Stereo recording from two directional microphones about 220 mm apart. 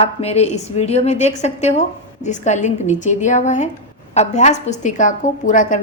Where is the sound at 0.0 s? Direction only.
30° left (ahead or behind).